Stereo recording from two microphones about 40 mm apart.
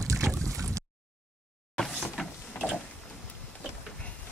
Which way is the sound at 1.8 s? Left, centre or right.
Centre.